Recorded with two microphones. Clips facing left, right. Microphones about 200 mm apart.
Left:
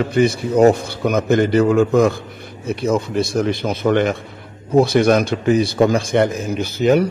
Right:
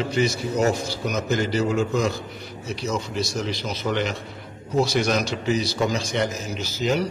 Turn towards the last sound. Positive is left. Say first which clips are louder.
# left 9 dB
turn(degrees=55)  # may be behind; listen again after turning